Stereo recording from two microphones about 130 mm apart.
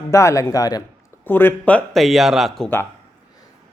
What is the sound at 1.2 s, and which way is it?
A man's voice, 15° left (ahead or behind).